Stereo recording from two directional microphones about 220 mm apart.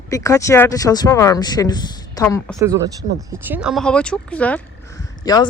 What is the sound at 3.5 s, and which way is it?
Speech, 5° right (ahead or behind).